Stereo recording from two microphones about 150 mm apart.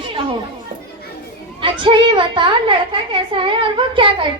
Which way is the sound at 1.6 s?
35° right (ahead or behind).